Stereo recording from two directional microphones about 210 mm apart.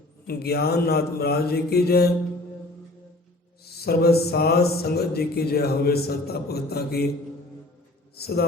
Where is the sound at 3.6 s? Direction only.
50° left (ahead or behind).